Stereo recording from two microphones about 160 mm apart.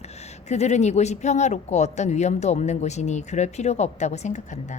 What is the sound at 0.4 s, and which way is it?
A woman's voice, 45° left (ahead or behind).